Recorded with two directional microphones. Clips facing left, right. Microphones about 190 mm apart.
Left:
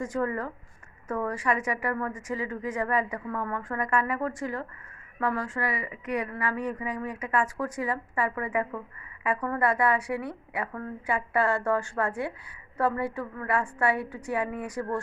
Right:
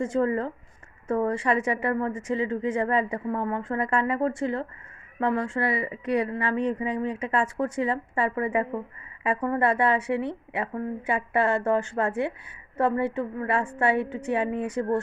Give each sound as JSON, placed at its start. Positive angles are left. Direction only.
{"t": 0.0, "sound": "speech", "side_deg": -25}